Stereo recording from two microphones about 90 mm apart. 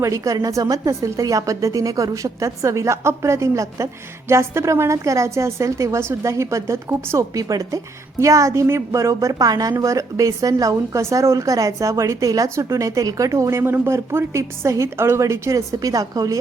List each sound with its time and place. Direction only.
0.0 s a woman's voice: 40° right (ahead or behind)